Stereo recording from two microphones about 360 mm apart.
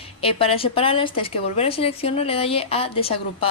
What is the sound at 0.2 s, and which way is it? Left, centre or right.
Speech, centre.